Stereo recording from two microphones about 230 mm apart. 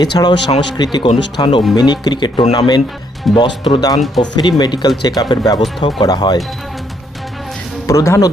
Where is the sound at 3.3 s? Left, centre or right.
Centre.